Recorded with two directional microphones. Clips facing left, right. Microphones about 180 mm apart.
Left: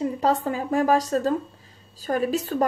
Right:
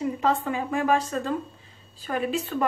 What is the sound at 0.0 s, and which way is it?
Speech, 40° left (ahead or behind).